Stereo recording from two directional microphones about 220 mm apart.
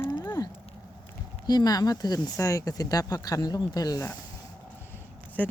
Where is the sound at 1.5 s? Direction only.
20° left (ahead or behind).